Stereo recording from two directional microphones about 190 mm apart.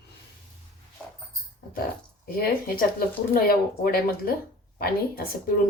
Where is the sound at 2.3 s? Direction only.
50° left (ahead or behind).